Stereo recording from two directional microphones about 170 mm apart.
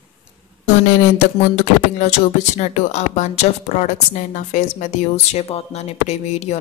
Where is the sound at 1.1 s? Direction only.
40° left (ahead or behind).